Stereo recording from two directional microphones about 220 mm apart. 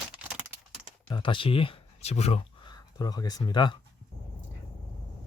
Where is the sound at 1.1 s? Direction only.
20° left (ahead or behind).